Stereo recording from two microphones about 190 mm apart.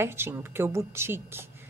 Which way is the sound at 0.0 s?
10° right (ahead or behind).